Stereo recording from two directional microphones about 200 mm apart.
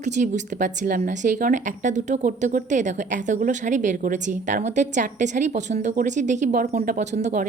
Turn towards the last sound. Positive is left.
turn(degrees=-40)  # may be behind; listen again after turning